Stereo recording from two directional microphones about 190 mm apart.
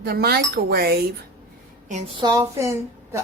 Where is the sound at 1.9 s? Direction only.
35° right (ahead or behind); by 3.2 s 15° right (ahead or behind).